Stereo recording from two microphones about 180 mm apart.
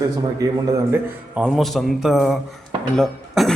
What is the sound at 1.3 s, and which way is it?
A man's voice, 5° right (ahead or behind).